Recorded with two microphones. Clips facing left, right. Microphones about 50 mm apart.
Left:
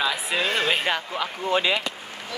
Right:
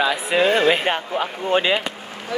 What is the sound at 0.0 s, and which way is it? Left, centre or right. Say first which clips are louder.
Speech: right 6 dB; centre.